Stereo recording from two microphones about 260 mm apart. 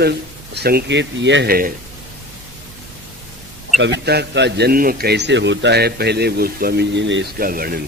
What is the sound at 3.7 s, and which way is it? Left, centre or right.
A man's voice, right.